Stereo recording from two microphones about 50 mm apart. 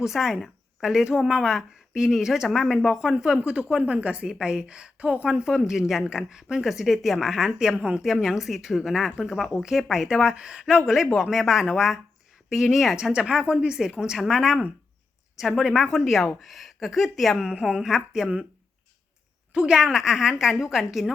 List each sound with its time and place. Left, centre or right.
0.0 s a woman's voice: centre
8.0 s speech: centre
13.0 s speech: centre
14.0 s speech: centre
17.4 s speech: centre
19.5 s speech: centre